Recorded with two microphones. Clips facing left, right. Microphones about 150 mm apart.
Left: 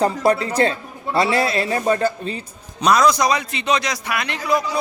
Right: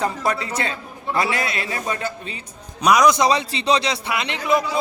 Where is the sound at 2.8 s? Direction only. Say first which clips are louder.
Even; 10° right (ahead or behind).